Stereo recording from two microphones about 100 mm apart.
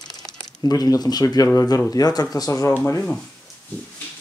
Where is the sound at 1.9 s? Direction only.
40° left (ahead or behind).